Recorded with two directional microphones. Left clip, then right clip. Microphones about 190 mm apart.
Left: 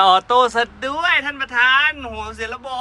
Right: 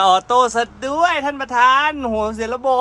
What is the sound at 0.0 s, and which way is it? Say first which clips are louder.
Speech: even; 15° right (ahead or behind).